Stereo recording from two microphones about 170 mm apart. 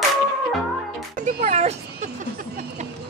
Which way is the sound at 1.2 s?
45° right (ahead or behind).